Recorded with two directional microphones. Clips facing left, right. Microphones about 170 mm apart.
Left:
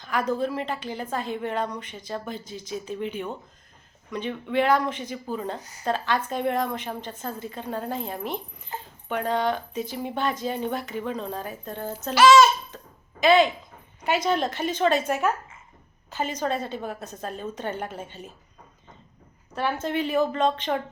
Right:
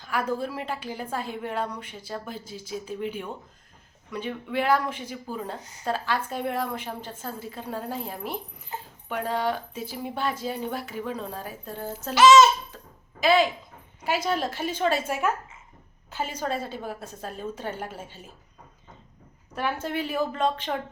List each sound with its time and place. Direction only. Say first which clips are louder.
0.0 s a woman's voice: left 3 dB; 10° right (ahead or behind)
12.1 s a child's voice: even; 20° right (ahead or behind)
12.7 s a sound: left 2 dB; 5° right (ahead or behind)
14.0 s speech: left 3 dB; 5° right (ahead or behind)
19.5 s speech: left 2 dB; 5° right (ahead or behind)